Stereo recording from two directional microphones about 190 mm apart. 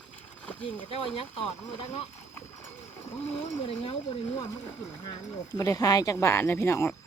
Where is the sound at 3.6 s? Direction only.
30° left (ahead or behind).